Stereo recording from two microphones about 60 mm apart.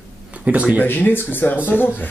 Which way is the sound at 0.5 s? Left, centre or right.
Right.